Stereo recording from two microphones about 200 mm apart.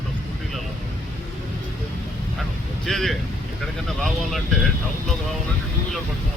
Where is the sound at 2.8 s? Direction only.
Centre (ahead or behind).